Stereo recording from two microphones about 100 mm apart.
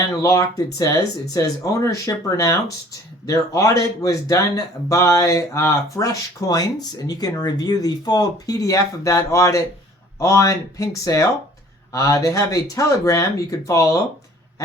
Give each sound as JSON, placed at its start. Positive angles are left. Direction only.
{"t": 0.2, "sound": "speech", "side_deg": 35}